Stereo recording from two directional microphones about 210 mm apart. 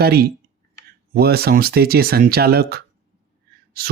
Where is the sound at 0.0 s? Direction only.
50° right (ahead or behind).